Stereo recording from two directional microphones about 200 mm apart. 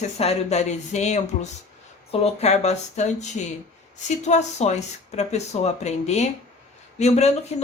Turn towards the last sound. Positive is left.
turn(degrees=35)  # may be behind; listen again after turning